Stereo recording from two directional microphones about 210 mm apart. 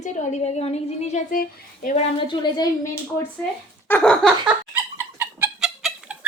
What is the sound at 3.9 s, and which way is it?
Speech, 5° left (ahead or behind).